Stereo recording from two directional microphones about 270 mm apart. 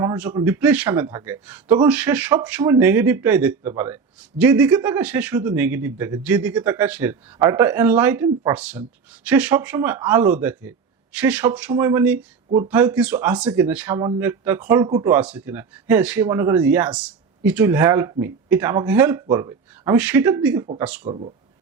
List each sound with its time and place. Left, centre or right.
0.0 s speech: centre
12.5 s speech: right
12.7 s speech: centre
21.1 s speech: right